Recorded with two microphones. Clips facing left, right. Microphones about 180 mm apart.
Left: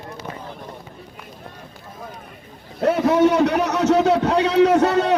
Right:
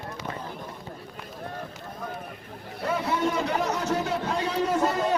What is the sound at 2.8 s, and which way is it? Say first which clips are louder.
A man's voice: left 11 dB; 70° left (ahead or behind).